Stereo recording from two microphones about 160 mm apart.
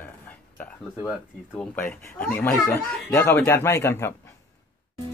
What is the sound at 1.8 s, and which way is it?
Speech, 10° left (ahead or behind).